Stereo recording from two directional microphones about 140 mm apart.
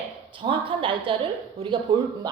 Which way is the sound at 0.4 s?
40° right (ahead or behind).